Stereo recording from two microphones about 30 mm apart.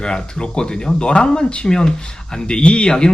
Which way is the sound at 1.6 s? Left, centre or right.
Left.